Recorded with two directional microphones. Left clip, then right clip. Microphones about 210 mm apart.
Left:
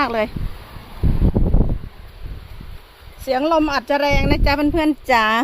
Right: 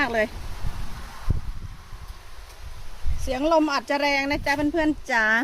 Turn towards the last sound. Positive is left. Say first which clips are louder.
# left 5 dB
turn(degrees=25)  # may be behind; listen again after turning